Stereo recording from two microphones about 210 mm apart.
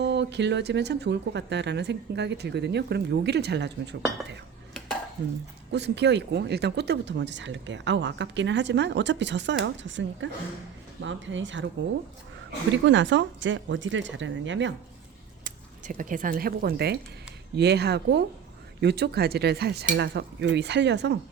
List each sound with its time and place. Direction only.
0.0 s speech: 55° right (ahead or behind)
5.7 s speech: 55° right (ahead or behind)
12.7 s speech: 60° right (ahead or behind)
15.4 s speech: 40° right (ahead or behind); by 21.2 s 55° right (ahead or behind)